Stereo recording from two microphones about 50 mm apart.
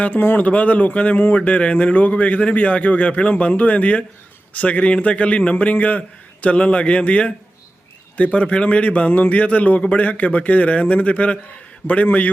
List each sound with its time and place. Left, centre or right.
0.0 s speech: left
0.3 s a man's voice: left